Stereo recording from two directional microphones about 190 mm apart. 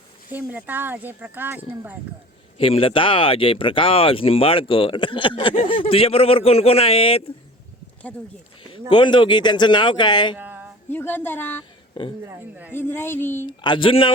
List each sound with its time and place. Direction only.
0.3 s speech: 10° right (ahead or behind)
2.6 s speech: 30° left (ahead or behind)
8.9 s speech: 25° left (ahead or behind)
10.3 s a sound: 10° right (ahead or behind)
10.8 s a woman's voice: 10° left (ahead or behind)
12.2 s speech: 10° right (ahead or behind)
12.7 s a woman's voice: 10° left (ahead or behind)
13.6 s speech: 25° left (ahead or behind)